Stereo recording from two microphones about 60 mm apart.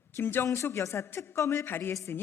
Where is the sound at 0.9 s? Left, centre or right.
Left.